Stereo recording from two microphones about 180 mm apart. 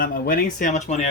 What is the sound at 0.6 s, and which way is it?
Speech, 40° left (ahead or behind).